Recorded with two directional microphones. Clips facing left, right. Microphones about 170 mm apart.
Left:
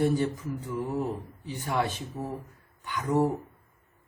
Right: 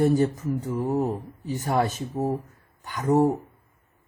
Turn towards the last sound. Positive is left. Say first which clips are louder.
# right 5 dB
turn(degrees=-40)  # may be behind; listen again after turning